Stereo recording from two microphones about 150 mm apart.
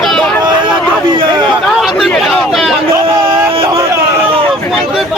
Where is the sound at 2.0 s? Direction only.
Centre (ahead or behind).